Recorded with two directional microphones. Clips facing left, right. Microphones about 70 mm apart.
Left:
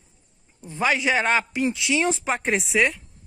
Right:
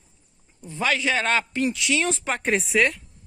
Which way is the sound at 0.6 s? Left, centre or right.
Left.